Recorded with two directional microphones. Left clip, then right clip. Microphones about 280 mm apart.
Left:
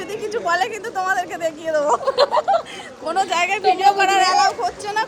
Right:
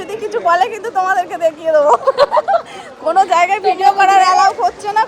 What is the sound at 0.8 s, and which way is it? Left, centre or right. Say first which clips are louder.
Speech: right 6 dB; centre.